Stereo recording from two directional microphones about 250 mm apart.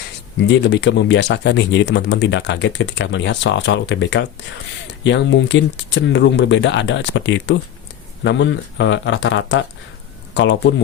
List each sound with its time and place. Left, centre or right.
0.4 s speech: left